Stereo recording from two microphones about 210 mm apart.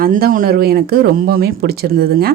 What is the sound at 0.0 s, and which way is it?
A woman's voice, 45° right (ahead or behind).